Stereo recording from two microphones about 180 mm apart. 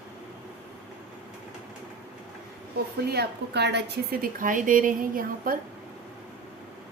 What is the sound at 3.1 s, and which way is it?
A woman's voice, 65° right (ahead or behind).